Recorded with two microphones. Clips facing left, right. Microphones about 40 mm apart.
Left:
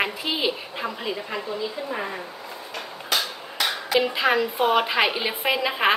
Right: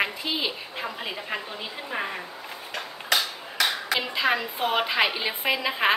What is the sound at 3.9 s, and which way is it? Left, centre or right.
A woman's voice, centre.